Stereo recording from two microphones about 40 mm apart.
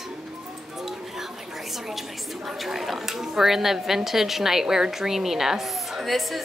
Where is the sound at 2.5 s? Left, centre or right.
Centre.